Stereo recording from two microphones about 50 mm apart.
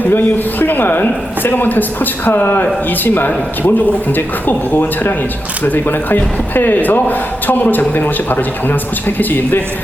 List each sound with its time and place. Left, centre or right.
0.0 s speech: left